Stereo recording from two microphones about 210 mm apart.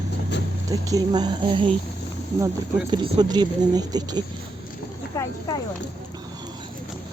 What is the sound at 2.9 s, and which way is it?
Speech, 20° right (ahead or behind).